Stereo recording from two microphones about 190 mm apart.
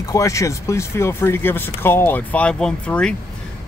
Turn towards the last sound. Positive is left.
turn(degrees=5)  # may be behind; listen again after turning